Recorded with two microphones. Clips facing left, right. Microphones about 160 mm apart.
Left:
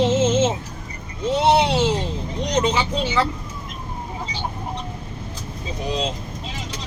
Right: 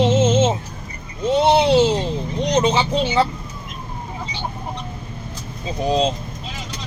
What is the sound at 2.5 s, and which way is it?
Vehicle, 20° right (ahead or behind).